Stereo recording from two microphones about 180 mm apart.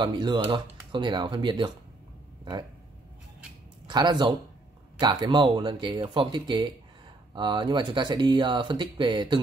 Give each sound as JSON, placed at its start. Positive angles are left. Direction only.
{"t": 0.0, "sound": "speech", "side_deg": -25}
{"t": 3.8, "sound": "speech", "side_deg": -25}